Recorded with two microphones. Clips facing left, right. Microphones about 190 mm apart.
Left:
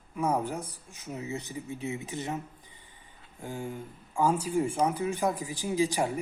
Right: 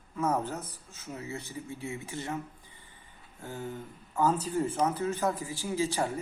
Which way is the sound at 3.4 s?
15° left (ahead or behind).